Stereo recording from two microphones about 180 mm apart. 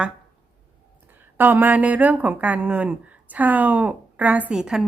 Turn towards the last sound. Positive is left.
turn(degrees=-5)  # may be behind; listen again after turning